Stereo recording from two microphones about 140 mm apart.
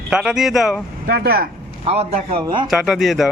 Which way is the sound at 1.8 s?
45° right (ahead or behind).